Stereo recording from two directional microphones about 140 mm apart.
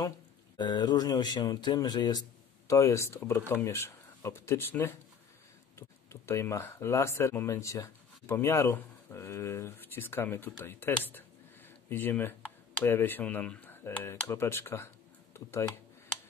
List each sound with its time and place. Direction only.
0.6 s speech: 30° left (ahead or behind)